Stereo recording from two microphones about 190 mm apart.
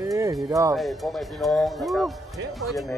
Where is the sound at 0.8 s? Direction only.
Centre (ahead or behind).